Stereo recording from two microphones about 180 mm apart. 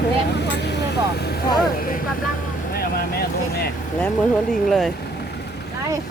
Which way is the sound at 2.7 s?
60° left (ahead or behind).